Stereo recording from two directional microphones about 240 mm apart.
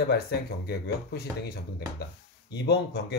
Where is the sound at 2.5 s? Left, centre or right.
Left.